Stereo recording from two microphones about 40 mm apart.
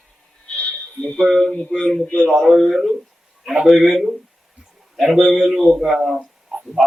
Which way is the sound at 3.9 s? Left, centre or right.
Centre.